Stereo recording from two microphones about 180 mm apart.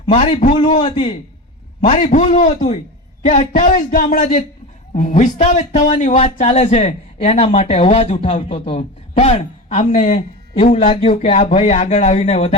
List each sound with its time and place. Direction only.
0.0 s a man's voice: 30° left (ahead or behind)
1.9 s a man's voice: 40° left (ahead or behind)
11.1 s a man's voice: 40° left (ahead or behind)